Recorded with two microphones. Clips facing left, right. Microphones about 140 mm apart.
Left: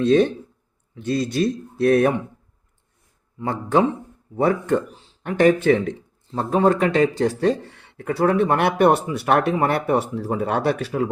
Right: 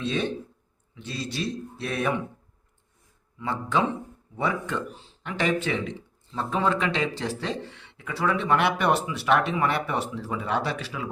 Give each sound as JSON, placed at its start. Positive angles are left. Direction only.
{"t": 0.0, "sound": "speech", "side_deg": 50}
{"t": 3.3, "sound": "speech", "side_deg": 50}